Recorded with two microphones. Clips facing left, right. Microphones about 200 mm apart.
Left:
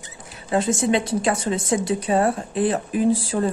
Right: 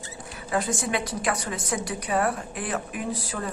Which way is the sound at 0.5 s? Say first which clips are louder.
Left 7 dB; 25° left (ahead or behind).